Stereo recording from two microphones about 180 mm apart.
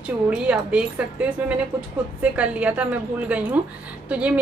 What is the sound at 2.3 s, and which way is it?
A woman's voice, 10° right (ahead or behind).